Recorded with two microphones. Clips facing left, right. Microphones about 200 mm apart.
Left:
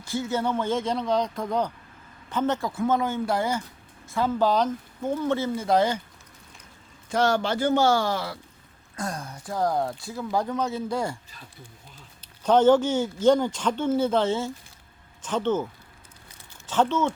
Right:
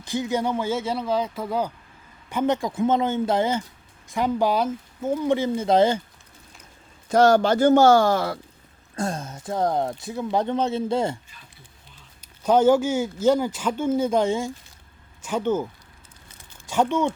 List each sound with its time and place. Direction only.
0.0 s speech: 15° right (ahead or behind)
7.1 s a man's voice: 40° right (ahead or behind)
9.0 s speech: 25° right (ahead or behind)
12.2 s speech: 10° right (ahead or behind)
16.6 s speech: 15° right (ahead or behind)